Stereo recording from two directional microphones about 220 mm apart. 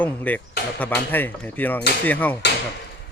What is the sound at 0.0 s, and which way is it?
Speech, 5° left (ahead or behind).